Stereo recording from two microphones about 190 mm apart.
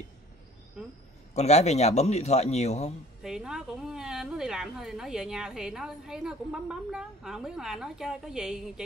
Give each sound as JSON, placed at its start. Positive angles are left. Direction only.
{"t": 1.3, "sound": "a man's voice", "side_deg": 35}
{"t": 3.2, "sound": "a woman's voice", "side_deg": 0}